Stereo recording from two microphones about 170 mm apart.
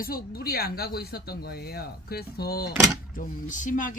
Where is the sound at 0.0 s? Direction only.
60° left (ahead or behind).